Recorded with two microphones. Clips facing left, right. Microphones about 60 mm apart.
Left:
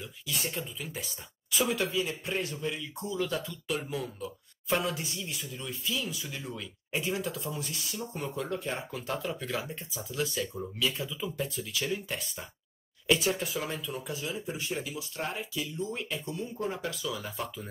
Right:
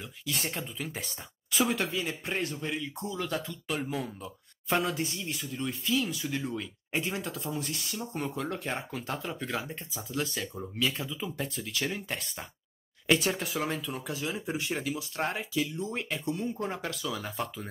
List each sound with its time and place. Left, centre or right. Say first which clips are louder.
0.2 s speech: right 1 dB; right
8.6 s speech: even; right
13.0 s speech: even; right
14.0 s speech: right 2 dB; right